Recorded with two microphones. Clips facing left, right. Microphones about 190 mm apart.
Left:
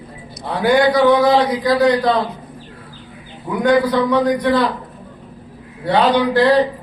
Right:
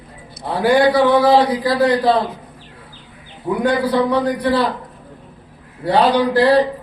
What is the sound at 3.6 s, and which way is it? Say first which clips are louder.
Speech: left 3 dB; 30° right (ahead or behind).